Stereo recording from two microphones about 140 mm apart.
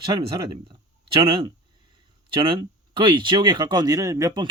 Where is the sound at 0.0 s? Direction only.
35° right (ahead or behind).